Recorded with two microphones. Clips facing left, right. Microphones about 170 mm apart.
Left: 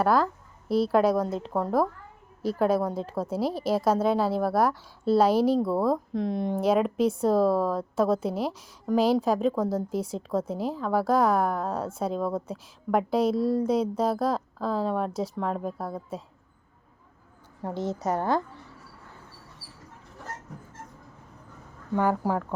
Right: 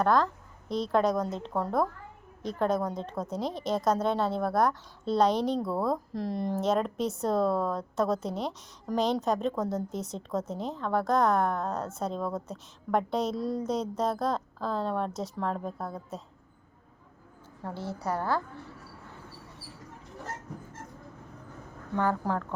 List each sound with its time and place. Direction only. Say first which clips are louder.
0.0 s a woman's voice: left 2 dB; 5° left (ahead or behind)
17.6 s a woman's voice: left 6 dB; 15° left (ahead or behind)
21.9 s speech: left 3 dB; 10° left (ahead or behind)